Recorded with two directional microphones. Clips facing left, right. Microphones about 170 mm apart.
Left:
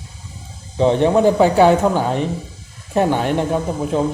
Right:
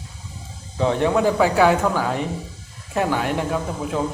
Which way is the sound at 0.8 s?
25° left (ahead or behind).